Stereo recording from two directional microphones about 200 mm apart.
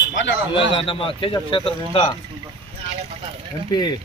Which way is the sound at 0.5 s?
25° left (ahead or behind).